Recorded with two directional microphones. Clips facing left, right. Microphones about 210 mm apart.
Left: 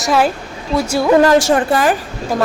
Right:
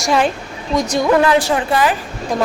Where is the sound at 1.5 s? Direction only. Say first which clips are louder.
Left 3 dB; 45° left (ahead or behind).